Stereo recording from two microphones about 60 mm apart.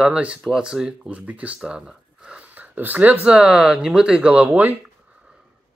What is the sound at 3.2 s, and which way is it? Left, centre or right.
Speech, centre.